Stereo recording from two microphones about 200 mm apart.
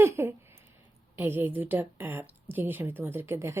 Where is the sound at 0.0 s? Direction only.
15° right (ahead or behind).